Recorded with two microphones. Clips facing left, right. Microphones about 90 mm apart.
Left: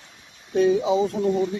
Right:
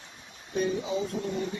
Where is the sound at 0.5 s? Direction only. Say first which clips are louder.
Left 10 dB; 85° left.